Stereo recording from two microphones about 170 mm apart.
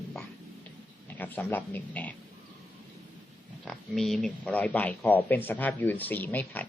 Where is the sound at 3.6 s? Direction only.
Centre (ahead or behind).